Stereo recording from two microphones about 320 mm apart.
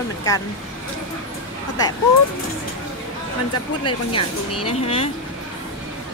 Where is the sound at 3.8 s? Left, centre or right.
Centre.